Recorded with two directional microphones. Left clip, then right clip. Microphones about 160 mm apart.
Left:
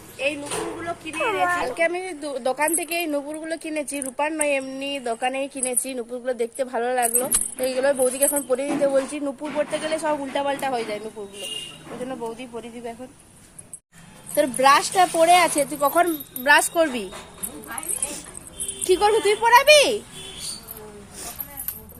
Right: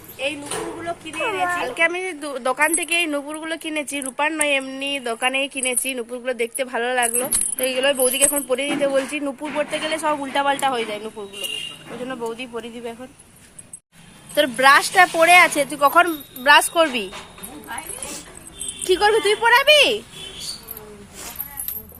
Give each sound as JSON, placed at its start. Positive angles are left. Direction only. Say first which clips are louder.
{"t": 0.4, "sound": "speech", "louder": "right 1 dB", "side_deg": -5}
{"t": 12.5, "sound": "a woman's voice", "louder": "right 3 dB", "side_deg": -20}
{"t": 14.3, "sound": "speech", "louder": "right 3 dB", "side_deg": 5}
{"t": 18.9, "sound": "speech", "louder": "right 2 dB", "side_deg": 0}